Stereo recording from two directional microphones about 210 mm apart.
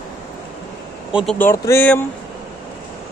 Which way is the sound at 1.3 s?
10° left (ahead or behind).